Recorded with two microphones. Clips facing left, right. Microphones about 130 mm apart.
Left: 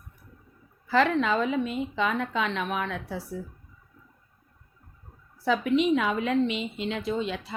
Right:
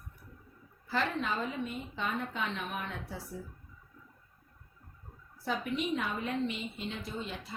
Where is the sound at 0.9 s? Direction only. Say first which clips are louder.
Left 10 dB; 90° left.